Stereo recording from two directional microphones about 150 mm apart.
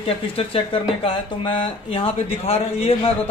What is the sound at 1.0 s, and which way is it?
Speech, 35° left (ahead or behind).